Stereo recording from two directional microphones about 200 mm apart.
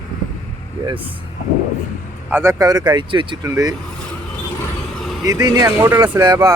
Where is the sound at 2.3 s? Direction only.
15° right (ahead or behind).